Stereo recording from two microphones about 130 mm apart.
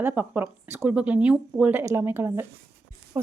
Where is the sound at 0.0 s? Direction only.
15° right (ahead or behind).